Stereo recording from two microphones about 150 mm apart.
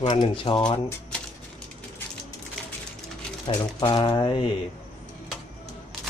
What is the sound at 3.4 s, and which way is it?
Speech, 30° left (ahead or behind).